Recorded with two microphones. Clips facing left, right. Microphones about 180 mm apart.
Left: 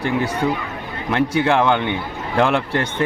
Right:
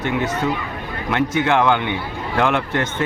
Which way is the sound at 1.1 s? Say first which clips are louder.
Left 1 dB; 35° left (ahead or behind).